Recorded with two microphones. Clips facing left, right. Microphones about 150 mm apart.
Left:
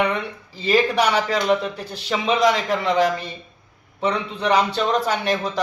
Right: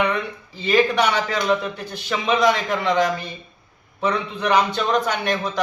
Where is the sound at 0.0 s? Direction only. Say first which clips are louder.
Even; 30° left (ahead or behind).